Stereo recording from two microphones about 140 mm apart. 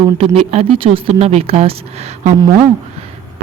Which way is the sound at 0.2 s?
45° right (ahead or behind).